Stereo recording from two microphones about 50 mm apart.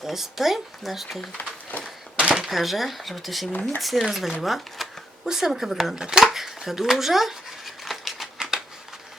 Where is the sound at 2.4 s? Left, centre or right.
Centre.